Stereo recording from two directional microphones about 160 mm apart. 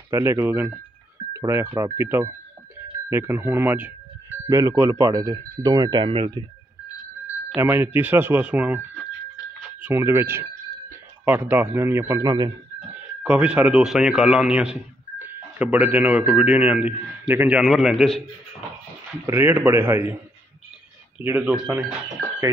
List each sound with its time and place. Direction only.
0.1 s speech: 15° right (ahead or behind); by 6.4 s 30° right (ahead or behind)
7.6 s speech: 15° right (ahead or behind)
13.2 s speech: 10° right (ahead or behind)
19.2 s speech: 15° right (ahead or behind)
21.2 s speech: 10° right (ahead or behind)